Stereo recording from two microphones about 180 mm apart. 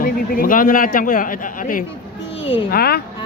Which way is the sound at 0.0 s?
50° left (ahead or behind).